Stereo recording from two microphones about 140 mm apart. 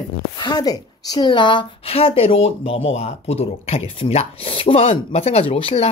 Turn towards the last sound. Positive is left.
turn(degrees=45)  # may be behind; listen again after turning